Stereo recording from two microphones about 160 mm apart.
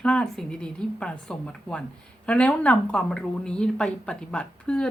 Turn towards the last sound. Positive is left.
turn(degrees=5)  # may be behind; listen again after turning